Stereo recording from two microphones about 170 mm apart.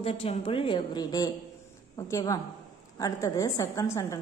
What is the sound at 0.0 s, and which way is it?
A woman's voice, 35° left (ahead or behind).